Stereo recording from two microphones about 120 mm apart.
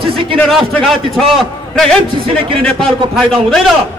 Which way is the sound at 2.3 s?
45° right (ahead or behind).